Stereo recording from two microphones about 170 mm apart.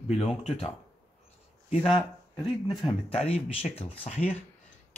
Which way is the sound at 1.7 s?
30° left (ahead or behind).